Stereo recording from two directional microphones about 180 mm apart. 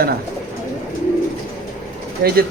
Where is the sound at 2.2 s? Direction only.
60° right (ahead or behind).